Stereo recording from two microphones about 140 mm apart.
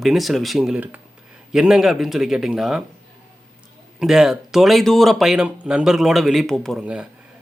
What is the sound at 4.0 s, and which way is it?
Speech, 5° right (ahead or behind).